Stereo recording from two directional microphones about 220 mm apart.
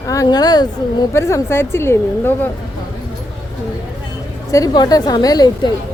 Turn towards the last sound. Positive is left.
turn(degrees=15)  # may be behind; listen again after turning